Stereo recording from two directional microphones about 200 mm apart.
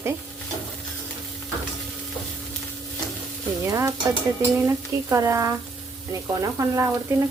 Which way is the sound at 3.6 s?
15° right (ahead or behind).